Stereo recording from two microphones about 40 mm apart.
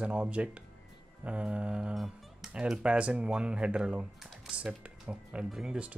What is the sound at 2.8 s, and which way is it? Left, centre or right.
Speech, right.